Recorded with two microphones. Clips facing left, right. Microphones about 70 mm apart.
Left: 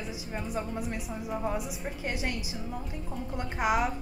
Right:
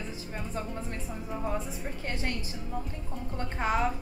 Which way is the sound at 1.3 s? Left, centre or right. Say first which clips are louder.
Left 1 dB; centre.